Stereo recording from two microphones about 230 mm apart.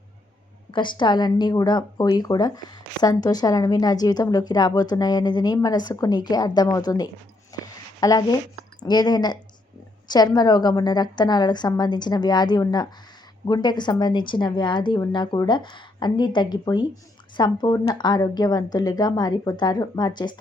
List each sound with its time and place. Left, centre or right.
0.7 s speech: left
7.5 s a sound: centre
8.0 s a woman's voice: centre